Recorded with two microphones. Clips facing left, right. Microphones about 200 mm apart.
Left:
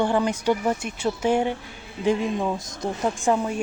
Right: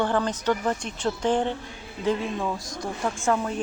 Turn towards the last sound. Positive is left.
turn(degrees=15)  # may be behind; listen again after turning